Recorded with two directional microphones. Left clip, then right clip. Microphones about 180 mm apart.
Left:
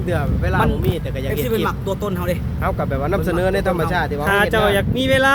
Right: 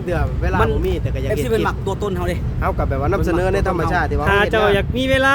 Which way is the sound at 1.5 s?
50° right (ahead or behind).